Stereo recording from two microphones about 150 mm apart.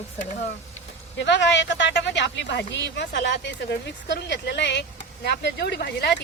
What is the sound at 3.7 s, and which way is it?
Speech, 90° left.